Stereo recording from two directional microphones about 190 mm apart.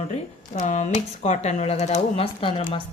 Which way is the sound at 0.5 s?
40° left (ahead or behind).